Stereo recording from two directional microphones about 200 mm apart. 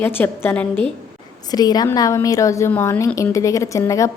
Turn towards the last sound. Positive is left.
turn(degrees=15)  # may be behind; listen again after turning